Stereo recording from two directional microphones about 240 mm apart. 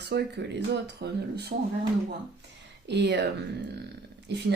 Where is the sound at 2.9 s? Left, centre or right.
Right.